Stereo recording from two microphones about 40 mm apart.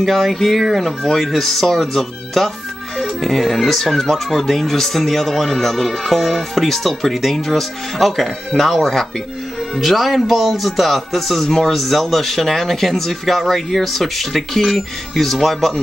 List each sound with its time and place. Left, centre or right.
0.0 s speech: centre